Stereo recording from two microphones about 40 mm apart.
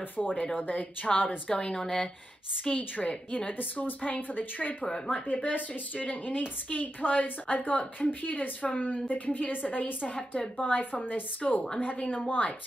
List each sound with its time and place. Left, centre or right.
0.2 s speech: centre
0.6 s speech: left
1.1 s speech: centre
1.5 s a woman's voice: left
3.0 s speech: left
3.5 s speech: left
4.8 s speech: centre
5.1 s speech: left
10.1 s speech: left